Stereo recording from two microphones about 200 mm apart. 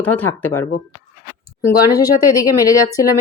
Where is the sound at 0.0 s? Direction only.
10° left (ahead or behind).